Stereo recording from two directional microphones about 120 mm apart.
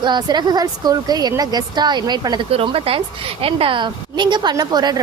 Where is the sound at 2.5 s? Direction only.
50° right (ahead or behind).